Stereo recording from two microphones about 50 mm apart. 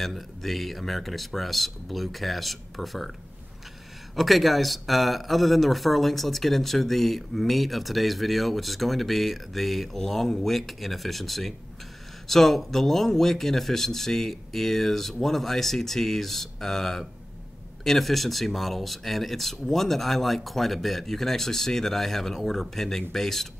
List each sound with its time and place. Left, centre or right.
0.0 s speech: centre
4.1 s speech: centre